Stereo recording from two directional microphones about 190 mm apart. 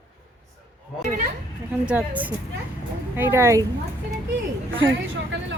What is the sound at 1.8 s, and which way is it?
Speech, 5° right (ahead or behind).